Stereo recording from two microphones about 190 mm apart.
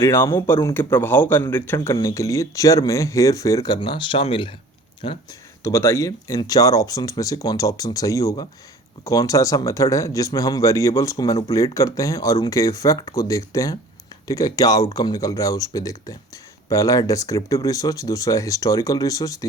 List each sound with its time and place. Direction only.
0.0 s a man's voice: 15° left (ahead or behind)
5.6 s a man's voice: 15° left (ahead or behind)